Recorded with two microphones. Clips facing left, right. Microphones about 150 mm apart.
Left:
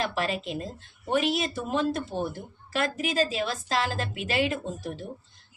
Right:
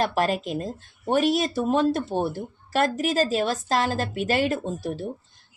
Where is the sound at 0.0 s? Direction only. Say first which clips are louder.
Right 5 dB; 45° right (ahead or behind).